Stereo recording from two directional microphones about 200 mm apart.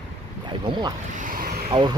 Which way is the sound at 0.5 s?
20° right (ahead or behind).